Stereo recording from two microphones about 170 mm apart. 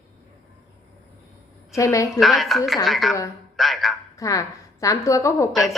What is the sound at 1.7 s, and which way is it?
Speech, 20° left (ahead or behind).